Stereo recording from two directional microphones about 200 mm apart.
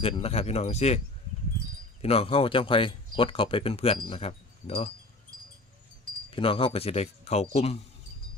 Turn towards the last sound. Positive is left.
turn(degrees=30)  # may be behind; listen again after turning